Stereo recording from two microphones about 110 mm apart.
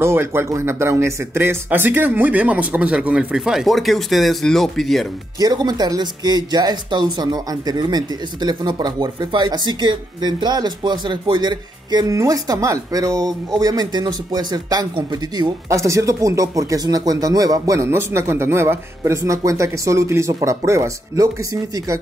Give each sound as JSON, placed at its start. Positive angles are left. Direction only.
{"t": 0.0, "sound": "speech", "side_deg": -20}
{"t": 5.4, "sound": "speech", "side_deg": -35}
{"t": 15.7, "sound": "speech", "side_deg": -30}